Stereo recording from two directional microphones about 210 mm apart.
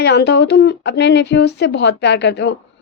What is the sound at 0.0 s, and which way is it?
A woman's voice, 55° left (ahead or behind).